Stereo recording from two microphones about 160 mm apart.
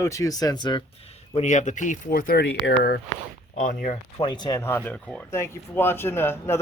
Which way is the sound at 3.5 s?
60° left (ahead or behind).